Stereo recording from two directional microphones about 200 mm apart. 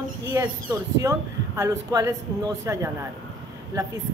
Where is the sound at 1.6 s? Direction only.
15° right (ahead or behind).